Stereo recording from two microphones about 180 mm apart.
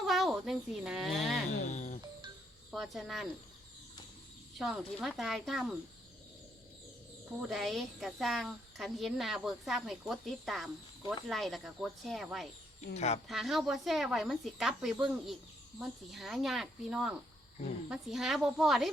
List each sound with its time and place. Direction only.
0.0 s speech: centre (ahead or behind)
1.6 s music: 40° left (ahead or behind)
2.7 s speech: centre (ahead or behind)
4.5 s speech: centre (ahead or behind)
7.4 s speech: centre (ahead or behind)